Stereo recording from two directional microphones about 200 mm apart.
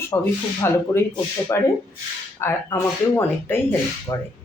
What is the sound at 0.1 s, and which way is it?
Speech, 15° left (ahead or behind).